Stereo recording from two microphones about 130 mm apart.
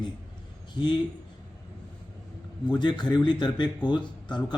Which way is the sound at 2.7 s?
35° left (ahead or behind).